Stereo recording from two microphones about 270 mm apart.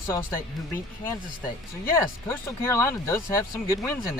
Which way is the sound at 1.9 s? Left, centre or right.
Centre.